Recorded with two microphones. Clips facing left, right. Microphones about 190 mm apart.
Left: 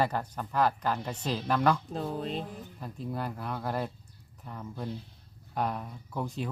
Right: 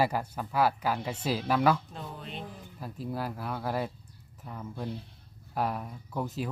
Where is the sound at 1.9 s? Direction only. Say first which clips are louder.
Left 8 dB; 40° left (ahead or behind).